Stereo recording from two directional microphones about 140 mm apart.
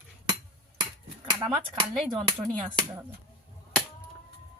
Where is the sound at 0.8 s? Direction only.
35° right (ahead or behind).